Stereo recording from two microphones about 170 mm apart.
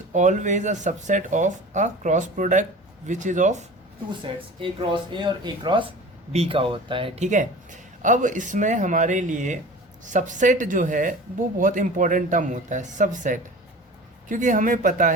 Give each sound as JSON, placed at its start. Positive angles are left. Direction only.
{"t": 0.1, "sound": "speech", "side_deg": -45}
{"t": 4.6, "sound": "speech", "side_deg": -30}
{"t": 7.2, "sound": "speech", "side_deg": -45}